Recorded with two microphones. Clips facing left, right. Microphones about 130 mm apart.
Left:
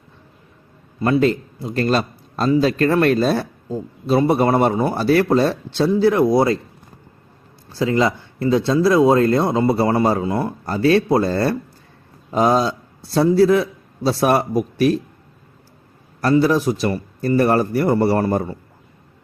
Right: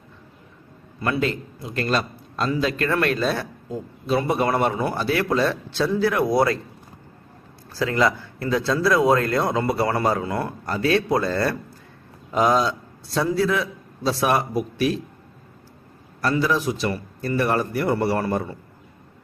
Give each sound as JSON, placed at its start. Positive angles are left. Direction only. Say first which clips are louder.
{"t": 1.0, "sound": "speech", "louder": "left 7 dB", "side_deg": 35}
{"t": 7.7, "sound": "speech", "louder": "left 3 dB", "side_deg": 25}
{"t": 10.7, "sound": "a man's voice", "louder": "left 5 dB", "side_deg": 35}
{"t": 16.3, "sound": "speech", "louder": "left 7 dB", "side_deg": 40}